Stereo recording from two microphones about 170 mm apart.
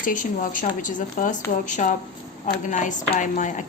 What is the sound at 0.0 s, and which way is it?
A woman's voice, 50° left (ahead or behind).